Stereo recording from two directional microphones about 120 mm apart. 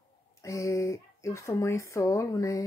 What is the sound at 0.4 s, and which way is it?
Speech, 25° left (ahead or behind).